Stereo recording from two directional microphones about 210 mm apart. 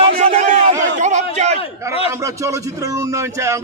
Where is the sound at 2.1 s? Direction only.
15° right (ahead or behind).